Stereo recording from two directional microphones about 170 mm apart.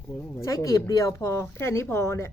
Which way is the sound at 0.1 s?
15° left (ahead or behind).